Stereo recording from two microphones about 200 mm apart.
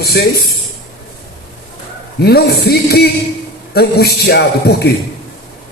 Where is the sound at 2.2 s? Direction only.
50° left (ahead or behind).